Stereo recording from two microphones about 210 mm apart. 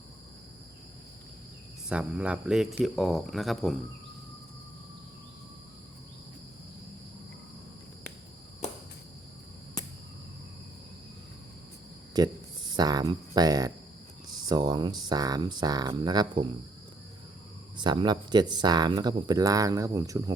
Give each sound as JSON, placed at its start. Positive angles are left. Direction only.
{"t": 1.9, "sound": "speech", "side_deg": -5}
{"t": 12.1, "sound": "speech", "side_deg": -20}
{"t": 17.7, "sound": "speech", "side_deg": -20}